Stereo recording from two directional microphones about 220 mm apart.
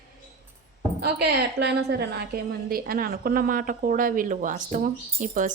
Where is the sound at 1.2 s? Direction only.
50° right (ahead or behind).